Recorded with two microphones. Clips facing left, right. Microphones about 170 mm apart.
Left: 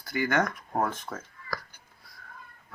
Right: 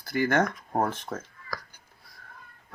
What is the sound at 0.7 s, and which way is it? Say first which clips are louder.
Speech: right 2 dB; 30° right (ahead or behind).